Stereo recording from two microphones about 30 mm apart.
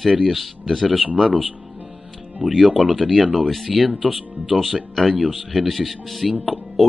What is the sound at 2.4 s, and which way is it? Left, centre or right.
Speech, right.